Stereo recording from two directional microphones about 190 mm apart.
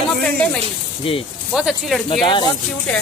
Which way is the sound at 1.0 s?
30° left (ahead or behind).